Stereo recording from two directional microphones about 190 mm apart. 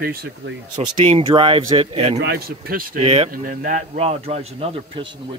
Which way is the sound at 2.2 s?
55° right (ahead or behind).